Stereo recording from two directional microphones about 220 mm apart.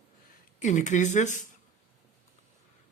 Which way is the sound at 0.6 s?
35° left (ahead or behind).